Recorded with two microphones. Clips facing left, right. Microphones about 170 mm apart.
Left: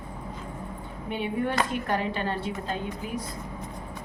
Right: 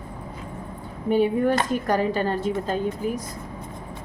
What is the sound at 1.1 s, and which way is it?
Speech, 40° right (ahead or behind).